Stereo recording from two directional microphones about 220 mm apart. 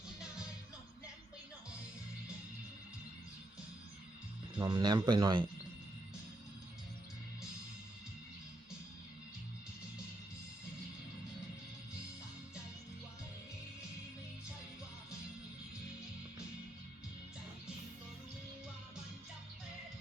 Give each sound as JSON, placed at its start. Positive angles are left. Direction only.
{"t": 4.5, "sound": "speech", "side_deg": -20}